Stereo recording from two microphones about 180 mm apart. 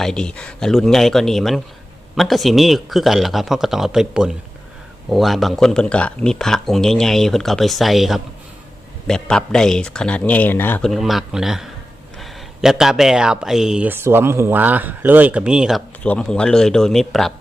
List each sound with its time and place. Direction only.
0.0 s speech: 5° left (ahead or behind)